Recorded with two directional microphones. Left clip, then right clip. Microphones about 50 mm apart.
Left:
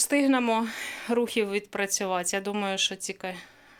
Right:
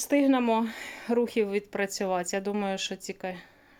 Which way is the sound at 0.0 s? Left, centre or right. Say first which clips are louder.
Even; right.